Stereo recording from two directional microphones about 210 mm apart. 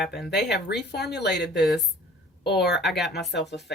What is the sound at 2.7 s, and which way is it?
Speech, centre (ahead or behind).